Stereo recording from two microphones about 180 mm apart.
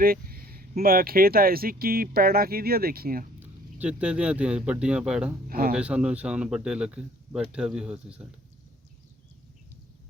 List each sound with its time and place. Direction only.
0.0 s speech: 55° right (ahead or behind)
3.4 s speech: 10° right (ahead or behind)
5.5 s speech: 55° right (ahead or behind)
5.7 s speech: 5° right (ahead or behind)